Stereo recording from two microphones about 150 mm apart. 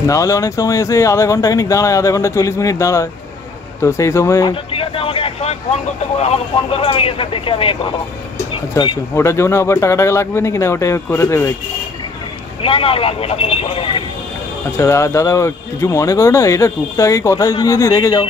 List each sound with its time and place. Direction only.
0.0 s speech: 20° left (ahead or behind)
4.5 s speech: 35° left (ahead or behind)
8.8 s speech: 20° left (ahead or behind)
12.6 s speech: 40° left (ahead or behind)
14.8 s speech: 20° left (ahead or behind)